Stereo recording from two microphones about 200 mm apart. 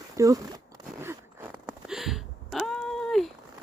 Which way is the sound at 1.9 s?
Centre (ahead or behind).